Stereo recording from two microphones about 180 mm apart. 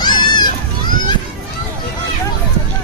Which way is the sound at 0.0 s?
25° left (ahead or behind).